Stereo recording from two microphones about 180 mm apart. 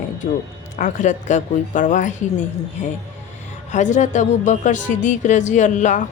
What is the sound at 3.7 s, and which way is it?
Speech, 40° left (ahead or behind).